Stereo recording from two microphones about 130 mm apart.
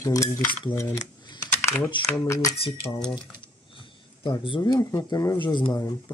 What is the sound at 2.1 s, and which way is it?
Speech, 25° left (ahead or behind).